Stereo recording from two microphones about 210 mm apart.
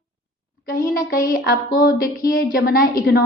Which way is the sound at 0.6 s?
40° left (ahead or behind).